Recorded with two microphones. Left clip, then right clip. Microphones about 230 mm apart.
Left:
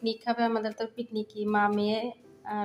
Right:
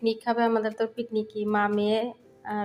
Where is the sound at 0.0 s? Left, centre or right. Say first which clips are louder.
Right 4 dB; centre.